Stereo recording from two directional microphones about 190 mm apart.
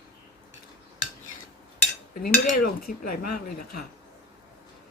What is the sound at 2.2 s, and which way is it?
Dishes, 45° left (ahead or behind).